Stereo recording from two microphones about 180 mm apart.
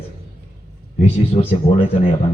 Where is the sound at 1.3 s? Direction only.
35° left (ahead or behind).